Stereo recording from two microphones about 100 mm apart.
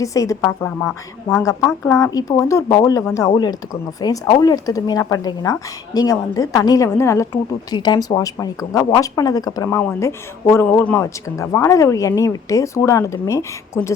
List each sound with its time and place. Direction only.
0.0 s a woman's voice: 35° left (ahead or behind)
0.6 s speech: 20° left (ahead or behind)
1.8 s a woman's voice: 30° left (ahead or behind)
7.7 s a woman's voice: 45° left (ahead or behind)
9.7 s a woman's voice: 25° left (ahead or behind)